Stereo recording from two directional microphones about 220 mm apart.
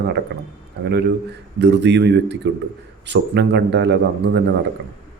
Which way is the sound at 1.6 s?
50° right (ahead or behind).